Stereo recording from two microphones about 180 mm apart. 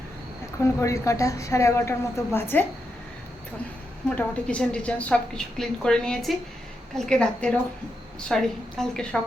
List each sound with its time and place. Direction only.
0.8 s a woman's voice: 15° left (ahead or behind)
4.1 s a woman's voice: 5° left (ahead or behind)